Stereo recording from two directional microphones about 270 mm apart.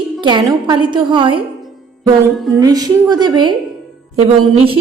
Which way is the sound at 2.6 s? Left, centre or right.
Centre.